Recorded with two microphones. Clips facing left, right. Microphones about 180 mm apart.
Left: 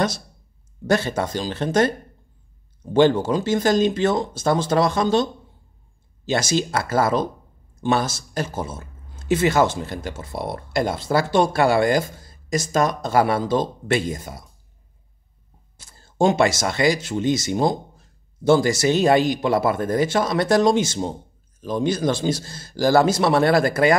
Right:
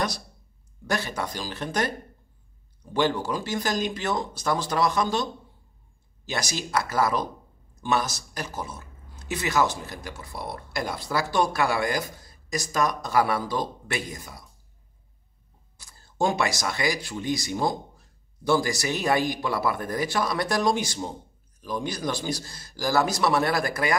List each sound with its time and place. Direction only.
0.8 s speech: 25° left (ahead or behind)
15.8 s speech: 25° left (ahead or behind)